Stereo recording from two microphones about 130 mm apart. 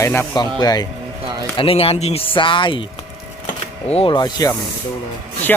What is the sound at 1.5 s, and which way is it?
Speech, 45° left (ahead or behind).